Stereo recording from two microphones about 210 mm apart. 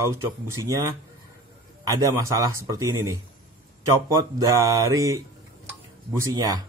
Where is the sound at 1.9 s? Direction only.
15° right (ahead or behind).